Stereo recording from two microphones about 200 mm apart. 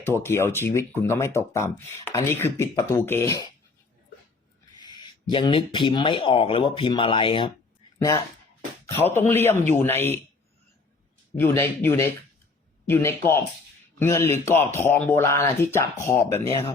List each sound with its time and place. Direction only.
0.0 s speech: 10° left (ahead or behind)
4.8 s a sound: 20° left (ahead or behind)
5.3 s speech: 25° left (ahead or behind)
7.9 s speech: 10° left (ahead or behind)
11.3 s speech: 10° left (ahead or behind)
16.5 s speech: 25° left (ahead or behind)